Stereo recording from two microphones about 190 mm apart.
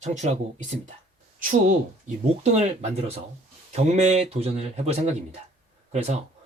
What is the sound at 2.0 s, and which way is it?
Speech, 35° right (ahead or behind).